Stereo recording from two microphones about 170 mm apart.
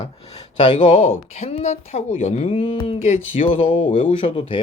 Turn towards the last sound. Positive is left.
turn(degrees=30)  # may be behind; listen again after turning